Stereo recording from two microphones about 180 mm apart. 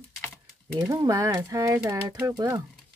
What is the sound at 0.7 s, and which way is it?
Speech, 15° right (ahead or behind).